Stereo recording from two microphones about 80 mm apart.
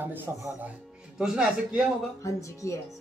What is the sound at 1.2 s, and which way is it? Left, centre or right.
Speech, centre.